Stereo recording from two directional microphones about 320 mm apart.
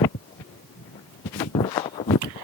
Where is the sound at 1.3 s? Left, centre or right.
Centre.